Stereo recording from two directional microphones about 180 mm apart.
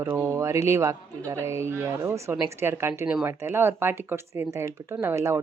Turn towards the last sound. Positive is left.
turn(degrees=-15)  # may be behind; listen again after turning